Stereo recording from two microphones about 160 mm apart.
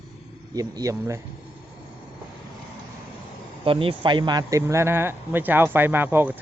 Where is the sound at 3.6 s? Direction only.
35° right (ahead or behind).